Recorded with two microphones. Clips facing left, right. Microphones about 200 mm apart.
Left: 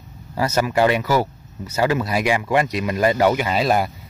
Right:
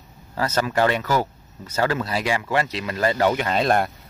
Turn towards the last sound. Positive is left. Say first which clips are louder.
# left 1 dB
turn(degrees=5)  # may be behind; listen again after turning